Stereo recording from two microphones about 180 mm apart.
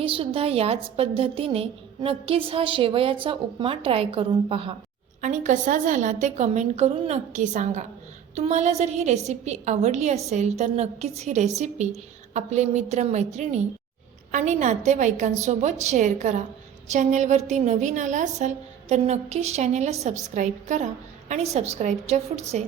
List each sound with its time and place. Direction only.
0.0 s a woman's voice: 30° right (ahead or behind)
5.2 s a woman's voice: 45° right (ahead or behind)